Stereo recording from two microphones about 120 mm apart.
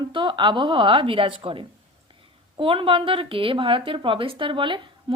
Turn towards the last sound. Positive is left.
turn(degrees=-45)  # may be behind; listen again after turning